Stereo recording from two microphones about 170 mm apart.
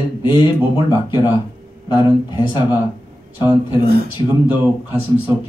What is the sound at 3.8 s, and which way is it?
Speech, 60° right (ahead or behind).